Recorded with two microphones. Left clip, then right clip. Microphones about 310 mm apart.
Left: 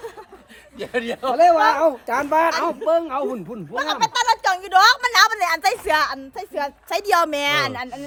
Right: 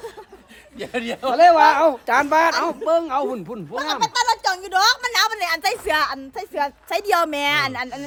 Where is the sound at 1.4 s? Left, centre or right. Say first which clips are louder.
Right 2 dB; centre.